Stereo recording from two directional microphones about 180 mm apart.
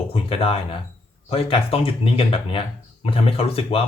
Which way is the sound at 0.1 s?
30° left (ahead or behind).